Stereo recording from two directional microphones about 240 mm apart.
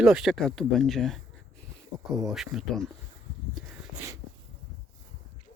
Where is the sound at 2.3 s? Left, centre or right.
Centre.